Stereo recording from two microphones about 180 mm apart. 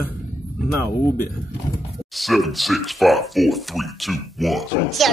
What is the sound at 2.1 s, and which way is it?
Speech, centre (ahead or behind).